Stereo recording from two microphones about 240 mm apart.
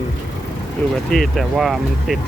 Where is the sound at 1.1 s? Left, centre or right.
Centre.